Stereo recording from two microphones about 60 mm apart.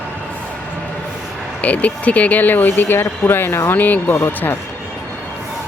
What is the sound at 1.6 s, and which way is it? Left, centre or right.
Speech, left.